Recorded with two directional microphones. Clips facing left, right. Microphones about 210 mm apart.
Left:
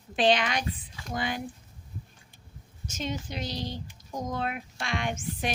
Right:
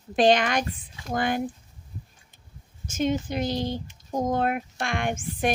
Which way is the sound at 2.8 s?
50° right (ahead or behind).